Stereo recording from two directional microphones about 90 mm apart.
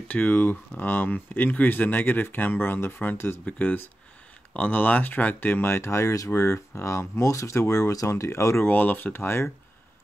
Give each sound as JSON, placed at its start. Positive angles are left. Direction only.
{"t": 0.1, "sound": "speech", "side_deg": 20}
{"t": 8.6, "sound": "speech", "side_deg": 20}